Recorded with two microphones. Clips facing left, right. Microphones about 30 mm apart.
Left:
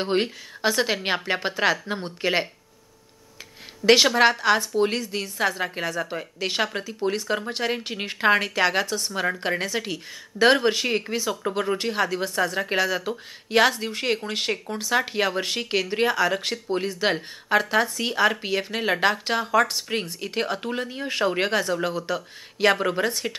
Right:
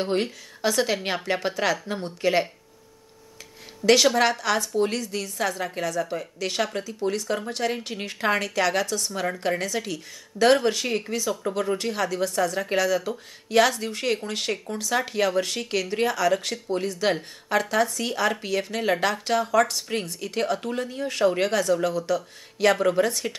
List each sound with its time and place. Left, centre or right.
0.0 s speech: left
3.8 s speech: left